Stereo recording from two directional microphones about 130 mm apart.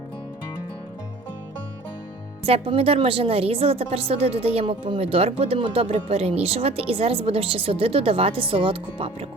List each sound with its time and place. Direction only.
2.5 s a woman's voice: 45° right (ahead or behind)